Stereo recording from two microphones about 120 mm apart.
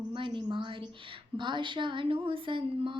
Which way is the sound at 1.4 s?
40° right (ahead or behind).